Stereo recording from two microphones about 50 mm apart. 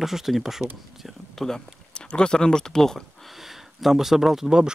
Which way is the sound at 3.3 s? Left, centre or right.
Centre.